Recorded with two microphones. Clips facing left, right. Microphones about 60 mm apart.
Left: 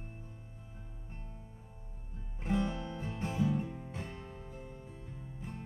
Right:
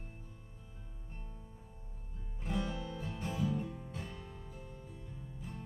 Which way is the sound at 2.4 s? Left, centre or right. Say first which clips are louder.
Left 4 dB; left.